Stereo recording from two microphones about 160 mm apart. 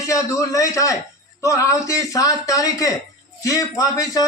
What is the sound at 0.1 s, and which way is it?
Speech, 20° left (ahead or behind).